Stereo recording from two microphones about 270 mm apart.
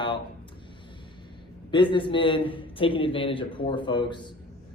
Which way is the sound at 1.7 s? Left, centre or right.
Centre.